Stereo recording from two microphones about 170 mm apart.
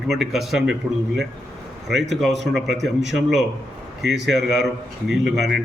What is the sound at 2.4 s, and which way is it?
Speech, centre (ahead or behind).